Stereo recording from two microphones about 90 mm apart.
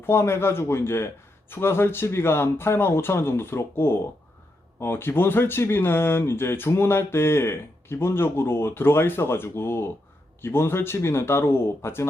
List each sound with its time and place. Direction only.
0.0 s speech: 25° left (ahead or behind)